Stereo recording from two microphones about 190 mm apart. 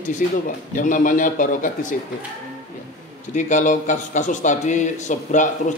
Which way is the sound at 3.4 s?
40° left (ahead or behind).